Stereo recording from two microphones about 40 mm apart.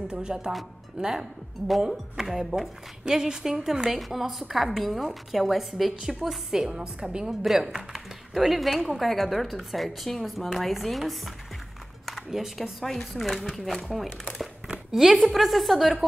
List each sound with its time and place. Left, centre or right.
0.1 s a woman's voice: right
7.2 s a woman's voice: centre
12.3 s speech: centre
13.1 s a woman's voice: centre
14.9 s a woman's voice: centre